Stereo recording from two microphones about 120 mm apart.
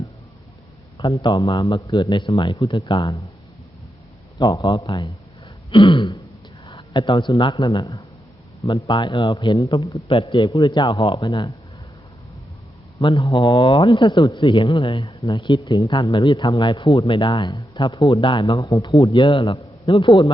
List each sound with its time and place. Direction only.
0.9 s speech: 40° left (ahead or behind)
4.4 s speech: 35° left (ahead or behind)
5.7 s throat clearing: 45° left (ahead or behind)
6.7 s speech: 40° left (ahead or behind)
13.0 s speech: 40° left (ahead or behind)